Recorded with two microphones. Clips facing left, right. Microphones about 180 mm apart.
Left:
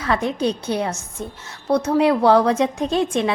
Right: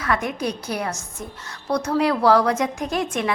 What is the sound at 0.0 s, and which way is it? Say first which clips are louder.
A woman's voice: left 3 dB; 30° left (ahead or behind).